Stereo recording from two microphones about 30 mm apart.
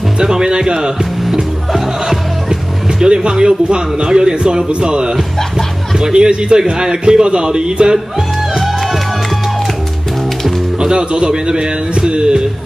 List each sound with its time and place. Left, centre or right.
0.2 s speech: right
2.0 s a man's voice: right
6.1 s a man's voice: right
10.8 s speech: right